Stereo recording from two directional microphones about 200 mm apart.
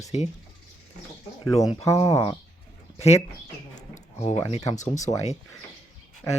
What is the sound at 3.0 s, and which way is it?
Speech, 30° left (ahead or behind).